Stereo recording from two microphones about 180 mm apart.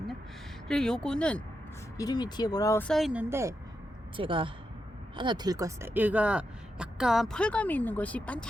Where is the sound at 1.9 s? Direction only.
20° left (ahead or behind).